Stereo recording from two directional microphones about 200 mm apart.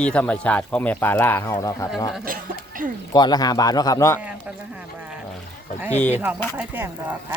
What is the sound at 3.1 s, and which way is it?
Speech, 20° left (ahead or behind).